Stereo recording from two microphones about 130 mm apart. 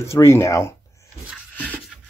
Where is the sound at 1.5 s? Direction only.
10° left (ahead or behind).